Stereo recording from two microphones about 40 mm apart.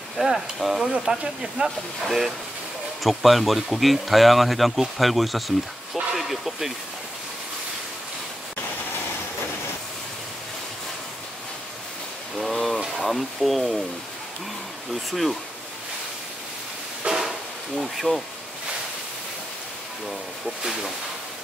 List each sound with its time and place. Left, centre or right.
0.2 s speech: right
0.6 s speech: centre
0.9 s speech: right
2.0 s speech: centre
6.1 s vehicle: centre
12.4 s a sound: centre
13.0 s speech: centre
15.0 s speech: centre
17.0 s music: right
17.7 s speech: centre
20.1 s speech: centre